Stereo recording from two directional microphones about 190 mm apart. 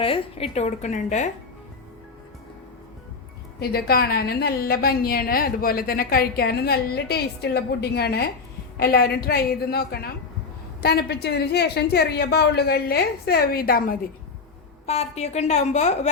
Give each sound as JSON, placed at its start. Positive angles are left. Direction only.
{"t": 0.0, "sound": "a woman's voice", "side_deg": 30}
{"t": 3.6, "sound": "a woman's voice", "side_deg": 55}
{"t": 14.8, "sound": "a woman's voice", "side_deg": 35}